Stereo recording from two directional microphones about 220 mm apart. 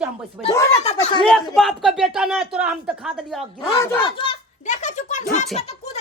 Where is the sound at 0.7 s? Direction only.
30° left (ahead or behind).